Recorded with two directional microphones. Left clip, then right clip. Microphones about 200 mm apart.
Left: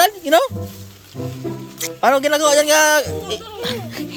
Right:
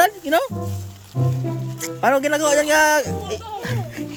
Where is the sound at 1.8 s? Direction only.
15° right (ahead or behind).